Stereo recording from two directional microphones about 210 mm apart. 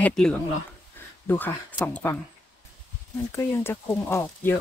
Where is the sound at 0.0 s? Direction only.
5° left (ahead or behind).